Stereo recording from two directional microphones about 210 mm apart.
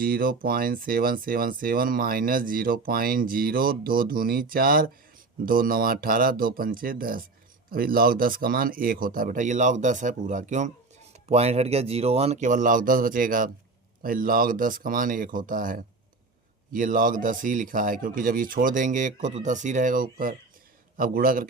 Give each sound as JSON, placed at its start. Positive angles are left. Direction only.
{"t": 0.0, "sound": "a man's voice", "side_deg": -45}